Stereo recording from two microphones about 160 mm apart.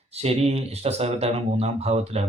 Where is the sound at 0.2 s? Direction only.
40° right (ahead or behind).